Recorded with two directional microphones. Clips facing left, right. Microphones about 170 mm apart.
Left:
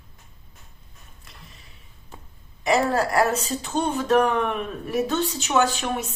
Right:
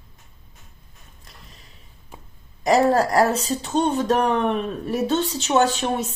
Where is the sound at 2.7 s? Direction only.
40° right (ahead or behind).